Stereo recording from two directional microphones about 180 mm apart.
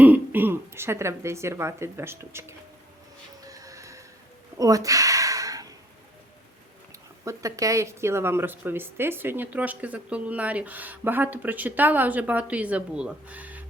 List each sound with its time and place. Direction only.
0.0 s speech: 10° right (ahead or behind)
3.4 s music: 20° right (ahead or behind)
4.5 s a sound: 20° right (ahead or behind)
7.3 s a woman's voice: 20° right (ahead or behind)